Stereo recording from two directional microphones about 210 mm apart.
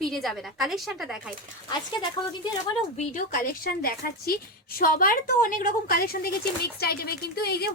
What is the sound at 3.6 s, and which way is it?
A woman's voice, 45° left (ahead or behind).